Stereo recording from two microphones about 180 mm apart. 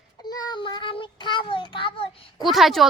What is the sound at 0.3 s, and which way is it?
Child singing, 20° left (ahead or behind).